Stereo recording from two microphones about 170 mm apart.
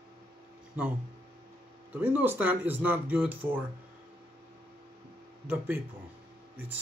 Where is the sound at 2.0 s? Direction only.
10° right (ahead or behind).